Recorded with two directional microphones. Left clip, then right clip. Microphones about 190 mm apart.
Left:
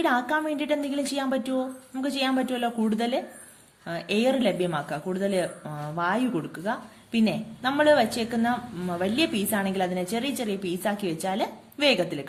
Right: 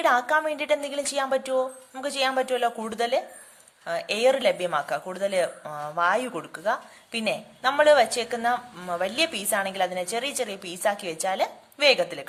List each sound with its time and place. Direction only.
0.0 s speech: 25° right (ahead or behind)